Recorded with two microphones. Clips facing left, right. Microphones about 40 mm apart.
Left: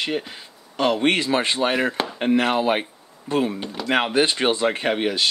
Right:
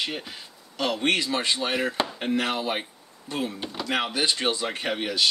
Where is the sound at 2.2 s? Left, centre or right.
Left.